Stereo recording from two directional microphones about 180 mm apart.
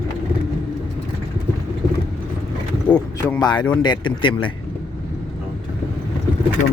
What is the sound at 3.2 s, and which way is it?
Speech, 20° left (ahead or behind).